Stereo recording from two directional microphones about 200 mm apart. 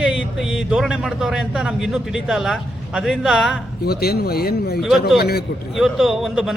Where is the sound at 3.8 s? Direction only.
50° left (ahead or behind).